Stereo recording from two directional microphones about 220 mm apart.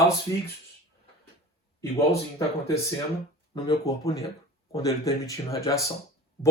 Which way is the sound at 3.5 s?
15° left (ahead or behind).